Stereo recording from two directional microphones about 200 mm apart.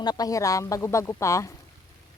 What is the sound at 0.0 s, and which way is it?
Speech, 20° left (ahead or behind).